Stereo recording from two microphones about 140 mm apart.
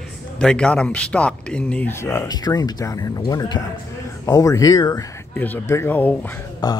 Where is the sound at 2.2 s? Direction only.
30° left (ahead or behind).